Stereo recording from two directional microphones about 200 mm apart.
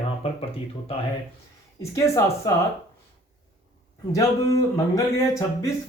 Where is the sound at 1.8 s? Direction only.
15° left (ahead or behind).